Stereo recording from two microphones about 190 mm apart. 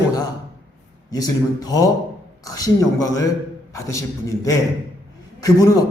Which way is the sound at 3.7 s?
15° left (ahead or behind).